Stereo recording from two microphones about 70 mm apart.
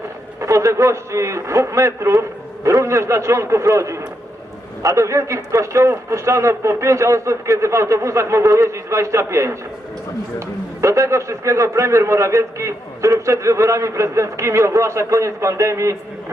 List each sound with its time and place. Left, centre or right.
0.3 s a man's voice: right
10.8 s a man's voice: right